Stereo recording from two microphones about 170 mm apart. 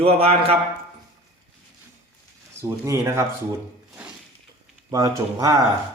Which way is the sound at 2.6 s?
15° right (ahead or behind).